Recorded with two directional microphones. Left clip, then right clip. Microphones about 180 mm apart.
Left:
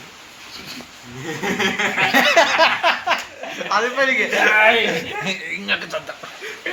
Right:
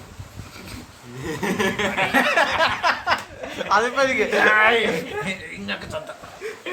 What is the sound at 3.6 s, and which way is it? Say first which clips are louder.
Speech: even; 90° right.